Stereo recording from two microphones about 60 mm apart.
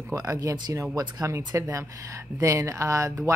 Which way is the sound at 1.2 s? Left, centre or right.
Right.